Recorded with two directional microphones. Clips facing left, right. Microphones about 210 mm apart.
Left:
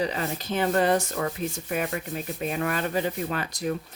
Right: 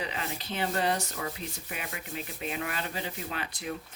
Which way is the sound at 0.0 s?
40° left (ahead or behind).